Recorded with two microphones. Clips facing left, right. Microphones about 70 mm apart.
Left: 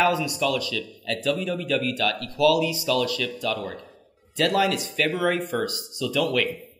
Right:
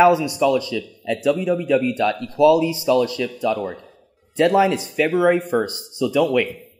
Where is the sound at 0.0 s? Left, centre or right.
Right.